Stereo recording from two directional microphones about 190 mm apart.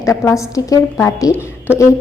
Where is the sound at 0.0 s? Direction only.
15° left (ahead or behind).